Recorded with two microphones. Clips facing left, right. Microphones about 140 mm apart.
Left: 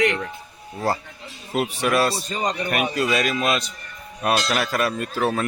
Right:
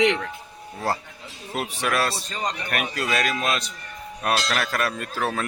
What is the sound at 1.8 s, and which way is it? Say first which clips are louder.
Speech: left 3 dB; centre (ahead or behind).